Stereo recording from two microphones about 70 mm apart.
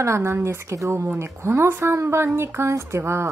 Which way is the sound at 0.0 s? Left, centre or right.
Right.